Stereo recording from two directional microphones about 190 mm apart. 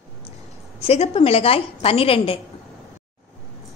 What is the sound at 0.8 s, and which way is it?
A woman's voice, 30° left (ahead or behind).